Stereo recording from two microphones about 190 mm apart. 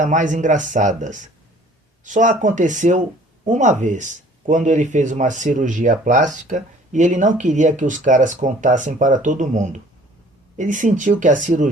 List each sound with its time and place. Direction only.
0.0 s speech: 40° right (ahead or behind)